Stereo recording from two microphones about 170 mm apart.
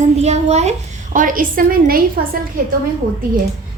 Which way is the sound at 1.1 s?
55° right (ahead or behind).